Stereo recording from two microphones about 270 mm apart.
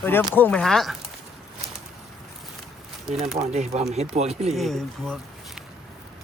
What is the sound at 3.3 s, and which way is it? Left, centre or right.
Speech, right.